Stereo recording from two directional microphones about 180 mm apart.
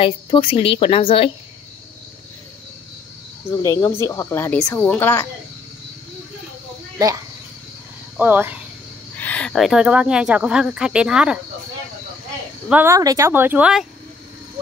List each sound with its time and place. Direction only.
0.0 s a woman's voice: 30° left (ahead or behind)
3.6 s speech: 15° left (ahead or behind)
8.2 s speech: 10° right (ahead or behind)
9.2 s speech: 5° left (ahead or behind)
12.6 s speech: 10° right (ahead or behind)